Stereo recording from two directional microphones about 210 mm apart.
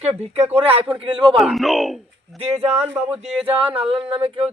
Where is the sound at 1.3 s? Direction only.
Centre (ahead or behind).